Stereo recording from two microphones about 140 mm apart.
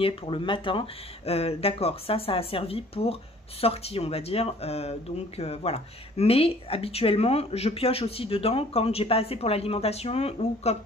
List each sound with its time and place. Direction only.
0.0 s speech: 35° left (ahead or behind)